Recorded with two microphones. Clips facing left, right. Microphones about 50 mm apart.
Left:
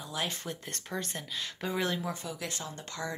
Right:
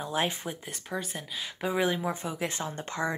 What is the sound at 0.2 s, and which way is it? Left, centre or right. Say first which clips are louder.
Speech: right 6 dB; right.